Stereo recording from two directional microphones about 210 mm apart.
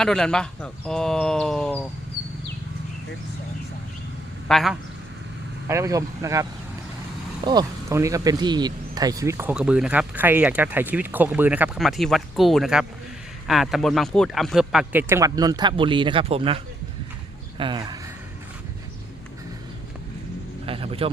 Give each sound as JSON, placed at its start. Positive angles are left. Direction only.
{"t": 0.0, "sound": "speech", "side_deg": 5}
{"t": 4.4, "sound": "a man's voice", "side_deg": 0}
{"t": 5.6, "sound": "speech", "side_deg": -15}
{"t": 17.6, "sound": "speech", "side_deg": -20}
{"t": 20.7, "sound": "vehicle", "side_deg": -25}